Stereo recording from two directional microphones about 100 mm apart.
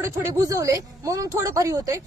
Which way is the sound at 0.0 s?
35° right (ahead or behind).